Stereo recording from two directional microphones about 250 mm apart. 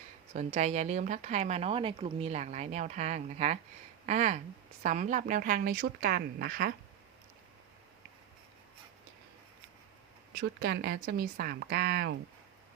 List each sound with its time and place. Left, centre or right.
0.3 s a woman's voice: right
10.6 s a woman's voice: right